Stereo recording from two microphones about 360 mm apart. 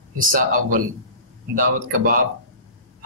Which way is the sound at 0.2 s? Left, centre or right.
Right.